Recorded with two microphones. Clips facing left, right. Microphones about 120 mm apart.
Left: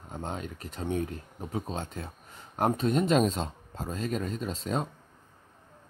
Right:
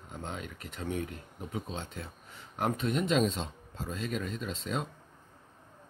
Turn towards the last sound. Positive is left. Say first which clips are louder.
# left 4 dB
turn(degrees=40)  # may be behind; listen again after turning